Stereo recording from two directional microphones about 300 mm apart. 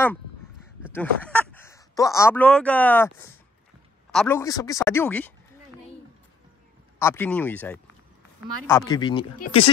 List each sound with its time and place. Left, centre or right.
0.9 s speech: centre
7.0 s speech: centre